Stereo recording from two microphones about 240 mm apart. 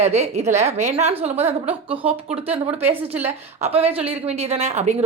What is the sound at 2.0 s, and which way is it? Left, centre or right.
Speech, centre.